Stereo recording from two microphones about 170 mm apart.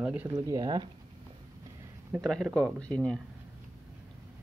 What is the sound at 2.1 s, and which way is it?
Speech, centre (ahead or behind).